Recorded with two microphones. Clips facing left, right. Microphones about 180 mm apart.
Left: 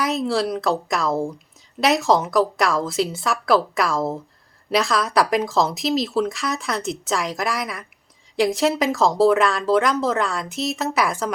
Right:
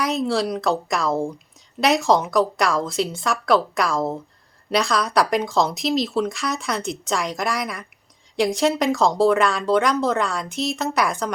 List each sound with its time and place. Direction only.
0.0 s speech: centre (ahead or behind)